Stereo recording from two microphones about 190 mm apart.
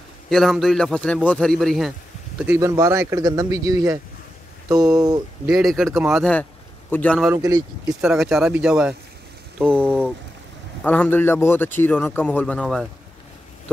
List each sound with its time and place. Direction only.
0.3 s a man's voice: centre (ahead or behind)
2.4 s speech: 10° right (ahead or behind)
5.5 s a man's voice: centre (ahead or behind)
7.2 s speech: 20° right (ahead or behind)
7.9 s a man's voice: centre (ahead or behind)
10.8 s a man's voice: 10° left (ahead or behind)